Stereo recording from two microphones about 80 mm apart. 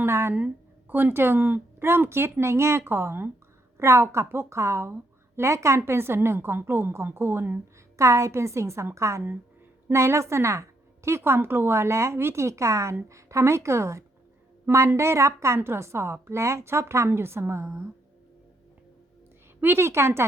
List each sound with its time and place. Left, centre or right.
0.0 s a woman's voice: right
7.9 s a woman's voice: right
19.6 s a woman's voice: right